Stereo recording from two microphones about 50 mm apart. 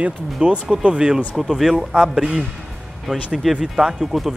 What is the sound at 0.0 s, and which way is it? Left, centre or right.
Speech, right.